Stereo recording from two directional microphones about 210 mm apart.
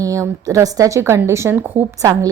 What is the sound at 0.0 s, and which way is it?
A woman's voice, 15° right (ahead or behind).